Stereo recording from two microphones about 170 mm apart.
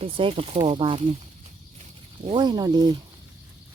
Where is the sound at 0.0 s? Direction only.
35° right (ahead or behind).